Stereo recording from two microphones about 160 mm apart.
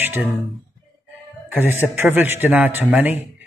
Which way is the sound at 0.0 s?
10° right (ahead or behind).